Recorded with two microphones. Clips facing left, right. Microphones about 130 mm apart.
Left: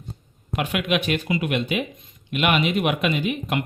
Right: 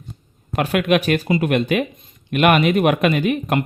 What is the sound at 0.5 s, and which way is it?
Speech, 45° right (ahead or behind).